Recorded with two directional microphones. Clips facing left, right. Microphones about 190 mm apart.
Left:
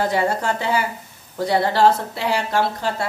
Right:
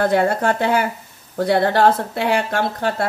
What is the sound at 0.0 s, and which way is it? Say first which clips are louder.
A woman's voice: right 4 dB; 55° right (ahead or behind).